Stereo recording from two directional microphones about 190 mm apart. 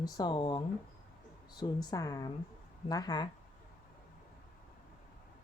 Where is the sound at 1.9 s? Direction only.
20° left (ahead or behind).